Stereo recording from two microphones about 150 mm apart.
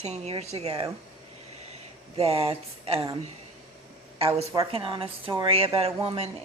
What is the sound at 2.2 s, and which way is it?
Speech, 40° right (ahead or behind).